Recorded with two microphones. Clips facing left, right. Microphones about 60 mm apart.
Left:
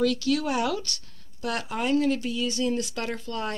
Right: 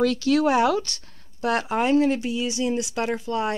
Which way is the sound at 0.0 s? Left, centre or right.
Right.